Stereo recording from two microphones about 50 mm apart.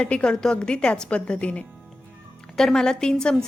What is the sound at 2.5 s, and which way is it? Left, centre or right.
Speech, centre.